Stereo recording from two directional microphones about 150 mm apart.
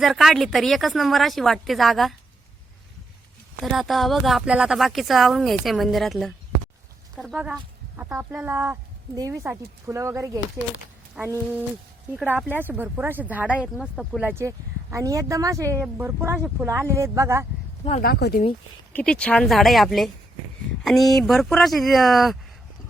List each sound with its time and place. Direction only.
0.0 s speech: centre (ahead or behind)
3.6 s speech: centre (ahead or behind); by 10.4 s 20° right (ahead or behind)
12.1 s speech: 10° right (ahead or behind)
14.3 s speech: 15° right (ahead or behind)
18.0 s speech: 90° left
18.9 s speech: 5° left (ahead or behind)